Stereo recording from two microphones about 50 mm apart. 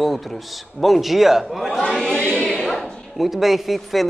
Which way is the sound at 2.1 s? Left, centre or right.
Centre.